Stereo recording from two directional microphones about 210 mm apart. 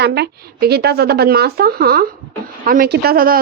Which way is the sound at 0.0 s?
50° right (ahead or behind).